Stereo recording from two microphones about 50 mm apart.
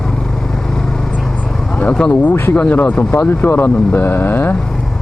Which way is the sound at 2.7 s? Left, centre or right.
Left.